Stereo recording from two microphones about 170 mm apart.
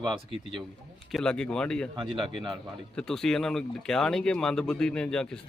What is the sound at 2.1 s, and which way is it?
Speech, 30° right (ahead or behind).